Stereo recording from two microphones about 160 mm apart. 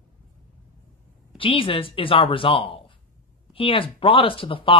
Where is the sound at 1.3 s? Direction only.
35° left (ahead or behind).